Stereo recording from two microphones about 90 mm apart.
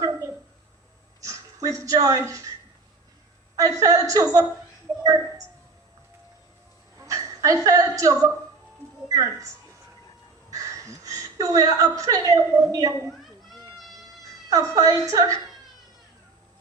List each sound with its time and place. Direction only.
0.0 s a sound: 30° right (ahead or behind)
1.2 s speech: 40° right (ahead or behind)
3.6 s a woman's voice: 40° right (ahead or behind)
7.0 s a sound: 35° right (ahead or behind)
9.0 s speech: 35° right (ahead or behind)
10.5 s a woman's voice: 35° right (ahead or behind)
13.1 s cat: centre (ahead or behind)
14.5 s a woman's voice: 40° right (ahead or behind)